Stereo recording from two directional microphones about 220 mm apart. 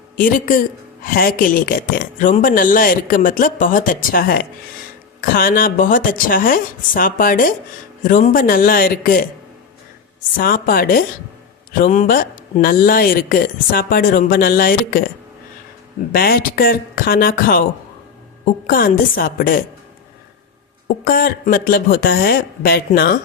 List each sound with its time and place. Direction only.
0.2 s speech: 40° left (ahead or behind)
10.3 s speech: 40° left (ahead or behind)
16.1 s speech: 45° left (ahead or behind)
18.7 s speech: 40° left (ahead or behind)
20.8 s speech: 40° left (ahead or behind)